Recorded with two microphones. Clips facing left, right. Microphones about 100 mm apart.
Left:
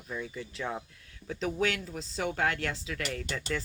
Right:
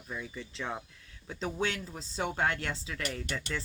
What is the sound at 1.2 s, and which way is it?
Speech, 30° right (ahead or behind).